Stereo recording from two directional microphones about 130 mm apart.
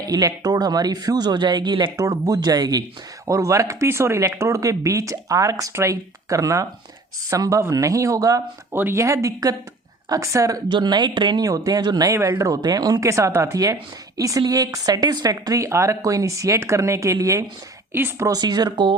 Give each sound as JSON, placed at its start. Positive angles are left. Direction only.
{"t": 0.0, "sound": "speech", "side_deg": -30}
{"t": 10.7, "sound": "speech", "side_deg": -35}
{"t": 18.3, "sound": "speech", "side_deg": -30}